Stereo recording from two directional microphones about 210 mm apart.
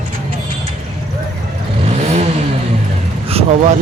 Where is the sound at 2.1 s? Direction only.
30° right (ahead or behind).